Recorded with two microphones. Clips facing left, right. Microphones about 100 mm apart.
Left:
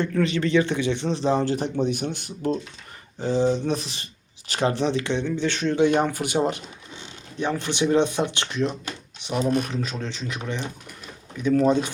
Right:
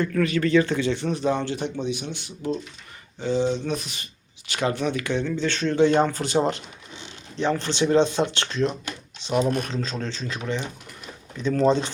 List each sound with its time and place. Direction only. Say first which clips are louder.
0.0 s speech: even; 25° left (ahead or behind)
1.8 s speech: left 4 dB; 50° left (ahead or behind); by 11.9 s 10° left (ahead or behind)